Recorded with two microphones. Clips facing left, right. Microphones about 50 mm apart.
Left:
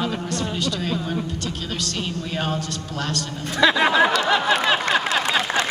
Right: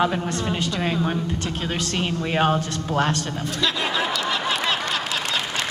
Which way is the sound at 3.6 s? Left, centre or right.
Left.